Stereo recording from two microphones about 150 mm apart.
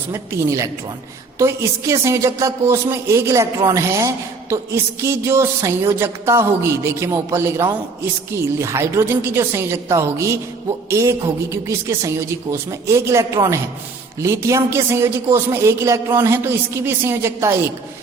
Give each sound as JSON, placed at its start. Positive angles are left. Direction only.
{"t": 0.1, "sound": "a man's voice", "side_deg": -20}